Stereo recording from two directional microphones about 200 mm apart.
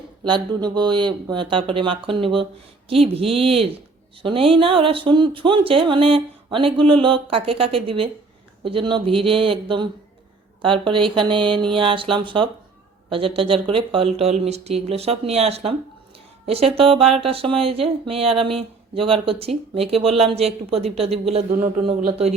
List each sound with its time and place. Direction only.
0.3 s speech: 20° right (ahead or behind)